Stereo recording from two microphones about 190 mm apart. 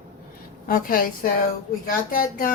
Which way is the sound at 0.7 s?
45° left (ahead or behind).